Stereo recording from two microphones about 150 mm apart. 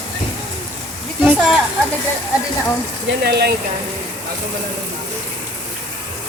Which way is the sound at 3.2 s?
90° right.